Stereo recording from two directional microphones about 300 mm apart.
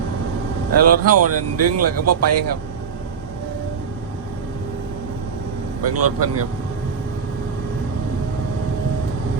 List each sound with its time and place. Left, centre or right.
0.7 s speech: right
5.8 s speech: right